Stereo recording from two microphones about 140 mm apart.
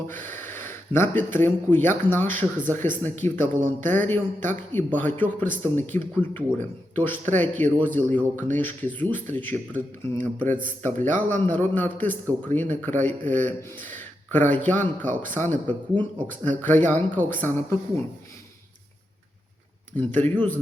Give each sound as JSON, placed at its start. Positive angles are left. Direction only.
{"t": 0.1, "sound": "a man's voice", "side_deg": 15}
{"t": 15.0, "sound": "speech", "side_deg": -65}
{"t": 15.3, "sound": "a man's voice", "side_deg": 15}
{"t": 20.0, "sound": "a man's voice", "side_deg": 10}